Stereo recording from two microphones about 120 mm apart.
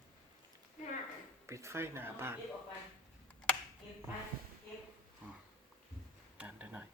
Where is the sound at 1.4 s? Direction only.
25° right (ahead or behind).